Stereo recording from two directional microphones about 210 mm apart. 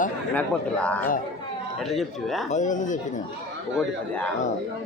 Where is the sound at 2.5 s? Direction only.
35° left (ahead or behind).